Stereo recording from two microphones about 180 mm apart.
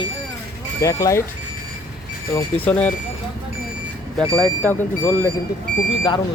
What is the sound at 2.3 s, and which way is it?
Speech, 10° left (ahead or behind).